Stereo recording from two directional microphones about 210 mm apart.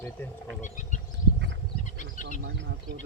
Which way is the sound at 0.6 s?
35° left (ahead or behind).